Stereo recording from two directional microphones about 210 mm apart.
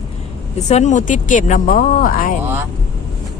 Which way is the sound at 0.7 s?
35° left (ahead or behind).